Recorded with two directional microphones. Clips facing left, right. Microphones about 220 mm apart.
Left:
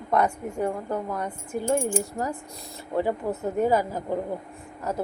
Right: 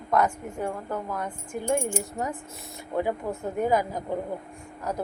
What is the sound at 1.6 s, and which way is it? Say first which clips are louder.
Speech: left 2 dB; 30° left (ahead or behind).